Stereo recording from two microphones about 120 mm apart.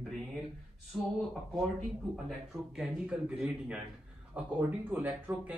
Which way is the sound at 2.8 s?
10° right (ahead or behind).